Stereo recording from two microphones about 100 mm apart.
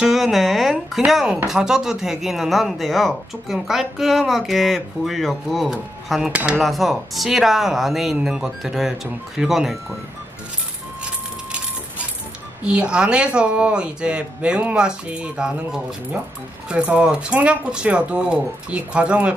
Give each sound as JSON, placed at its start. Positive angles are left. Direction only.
{"t": 0.0, "sound": "speech", "side_deg": 0}
{"t": 6.3, "sound": "speech", "side_deg": -15}
{"t": 6.6, "sound": "speech", "side_deg": 0}
{"t": 12.6, "sound": "speech", "side_deg": -10}